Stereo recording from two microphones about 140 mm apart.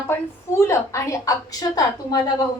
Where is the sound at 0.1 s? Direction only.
20° left (ahead or behind).